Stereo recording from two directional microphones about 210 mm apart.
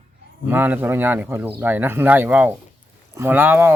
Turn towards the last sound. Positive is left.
turn(degrees=-10)  # may be behind; listen again after turning